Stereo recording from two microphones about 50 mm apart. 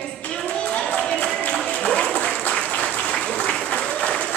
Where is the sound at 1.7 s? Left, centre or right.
Left.